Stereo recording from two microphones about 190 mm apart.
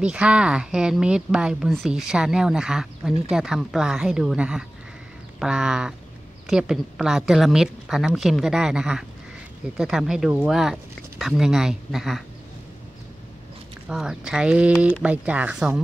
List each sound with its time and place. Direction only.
0.0 s a woman's voice: 5° right (ahead or behind)
13.8 s a woman's voice: 5° right (ahead or behind)